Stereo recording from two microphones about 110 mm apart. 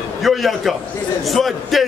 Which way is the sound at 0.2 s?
Centre (ahead or behind).